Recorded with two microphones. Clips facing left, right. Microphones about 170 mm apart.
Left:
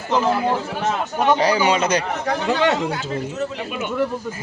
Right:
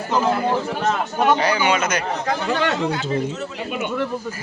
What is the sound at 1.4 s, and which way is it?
Speech, 35° left (ahead or behind).